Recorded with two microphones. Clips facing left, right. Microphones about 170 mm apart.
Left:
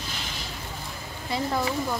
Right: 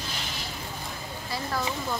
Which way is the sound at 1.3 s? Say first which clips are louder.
Left 5 dB; 20° left (ahead or behind).